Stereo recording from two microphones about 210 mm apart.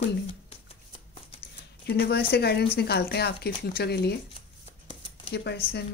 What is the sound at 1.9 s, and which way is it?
Speech, 50° left (ahead or behind).